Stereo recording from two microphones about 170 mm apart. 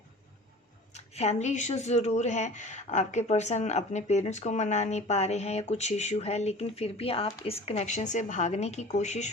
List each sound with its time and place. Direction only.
0.9 s speech: 40° left (ahead or behind)